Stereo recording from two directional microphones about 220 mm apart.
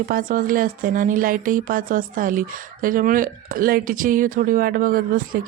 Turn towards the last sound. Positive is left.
turn(degrees=-40)  # may be behind; listen again after turning